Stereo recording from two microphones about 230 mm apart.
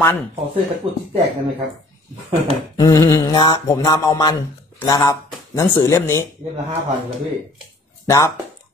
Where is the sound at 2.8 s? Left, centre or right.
Centre.